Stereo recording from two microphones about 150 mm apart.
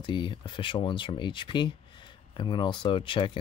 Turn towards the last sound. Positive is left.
turn(degrees=35)  # may be behind; listen again after turning